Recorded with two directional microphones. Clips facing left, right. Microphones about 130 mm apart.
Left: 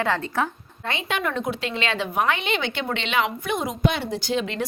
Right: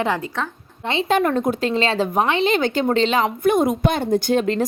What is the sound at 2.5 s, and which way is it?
Speech, 40° right (ahead or behind).